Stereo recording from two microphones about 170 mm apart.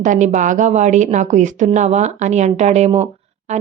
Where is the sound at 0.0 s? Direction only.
45° right (ahead or behind).